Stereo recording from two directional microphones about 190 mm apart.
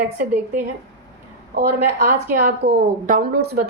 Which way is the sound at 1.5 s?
45° right (ahead or behind).